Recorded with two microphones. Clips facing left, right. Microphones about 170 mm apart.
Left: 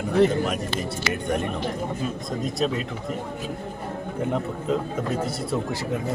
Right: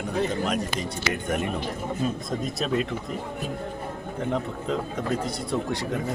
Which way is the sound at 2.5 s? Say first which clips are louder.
Left 1 dB; centre (ahead or behind).